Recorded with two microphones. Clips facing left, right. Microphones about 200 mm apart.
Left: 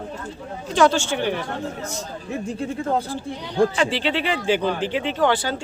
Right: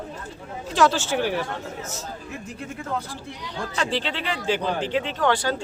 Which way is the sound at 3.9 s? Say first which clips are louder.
Left 4 dB; 75° left (ahead or behind).